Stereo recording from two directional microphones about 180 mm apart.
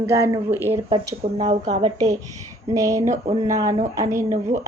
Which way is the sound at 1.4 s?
40° right (ahead or behind).